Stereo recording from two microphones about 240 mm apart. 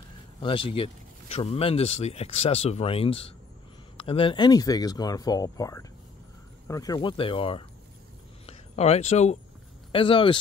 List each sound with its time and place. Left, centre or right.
0.4 s speech: left